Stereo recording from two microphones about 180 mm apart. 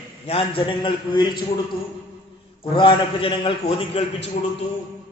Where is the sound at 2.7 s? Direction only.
30° left (ahead or behind).